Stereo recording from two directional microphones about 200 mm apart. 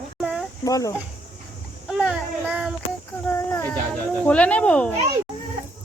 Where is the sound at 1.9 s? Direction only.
Centre (ahead or behind).